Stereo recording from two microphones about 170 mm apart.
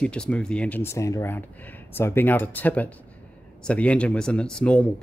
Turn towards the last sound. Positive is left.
turn(degrees=5)  # may be behind; listen again after turning